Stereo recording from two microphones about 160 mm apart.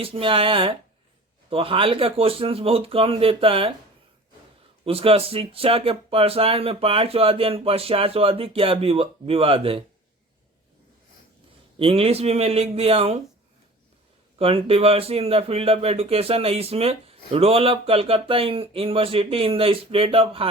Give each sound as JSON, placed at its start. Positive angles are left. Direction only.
{"t": 0.0, "sound": "speech", "side_deg": -35}
{"t": 4.9, "sound": "speech", "side_deg": -35}
{"t": 11.8, "sound": "speech", "side_deg": -35}
{"t": 14.3, "sound": "speech", "side_deg": -35}